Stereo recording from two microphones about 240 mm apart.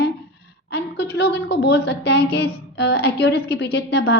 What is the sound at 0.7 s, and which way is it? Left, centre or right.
A woman's voice, left.